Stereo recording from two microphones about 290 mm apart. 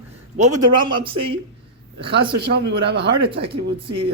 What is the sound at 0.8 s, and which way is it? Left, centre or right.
Speech, centre.